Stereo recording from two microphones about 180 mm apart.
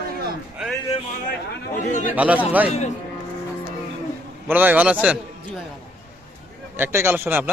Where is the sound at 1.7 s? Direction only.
45° left (ahead or behind).